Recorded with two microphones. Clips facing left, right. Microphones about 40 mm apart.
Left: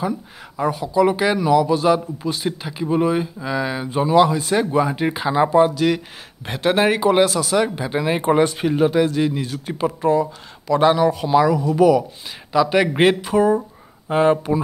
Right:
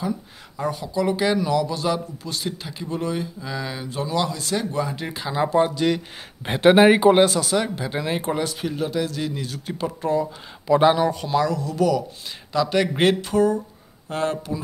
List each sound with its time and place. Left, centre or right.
0.6 s speech: centre
5.6 s speech: centre
6.6 s speech: centre
7.2 s speech: centre
8.3 s speech: left
9.0 s speech: centre
10.8 s speech: centre
11.2 s speech: centre